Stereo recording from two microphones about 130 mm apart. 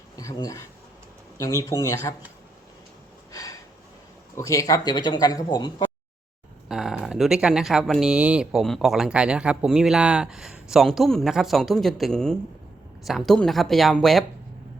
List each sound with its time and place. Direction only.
0.2 s speech: 25° left (ahead or behind)
3.3 s a sound: 25° left (ahead or behind)
4.4 s speech: 25° left (ahead or behind)
6.7 s speech: 5° right (ahead or behind)